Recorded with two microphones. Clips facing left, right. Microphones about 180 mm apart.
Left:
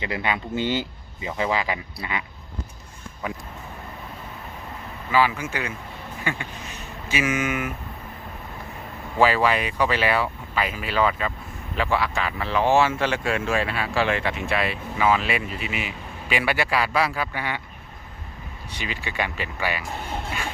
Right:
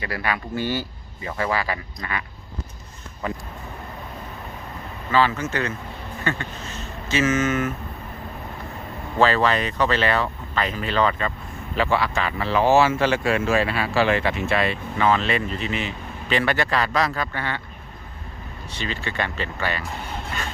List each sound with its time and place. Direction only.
0.0 s speech: 20° left (ahead or behind)
3.2 s speech: 10° left (ahead or behind)
5.1 s speech: 10° left (ahead or behind)
9.1 s speech: 10° left (ahead or behind)
12.5 s speech: 40° right (ahead or behind)
13.1 s speech: centre (ahead or behind)
18.7 s speech: 15° left (ahead or behind)